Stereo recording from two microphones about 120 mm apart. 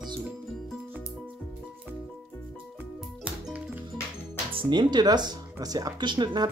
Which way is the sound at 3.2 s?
10° right (ahead or behind).